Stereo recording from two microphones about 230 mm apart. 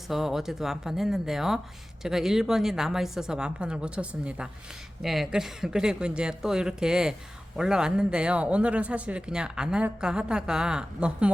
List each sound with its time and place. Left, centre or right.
0.1 s a woman's voice: centre